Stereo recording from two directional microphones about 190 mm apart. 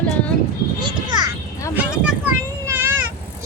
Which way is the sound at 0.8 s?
20° right (ahead or behind).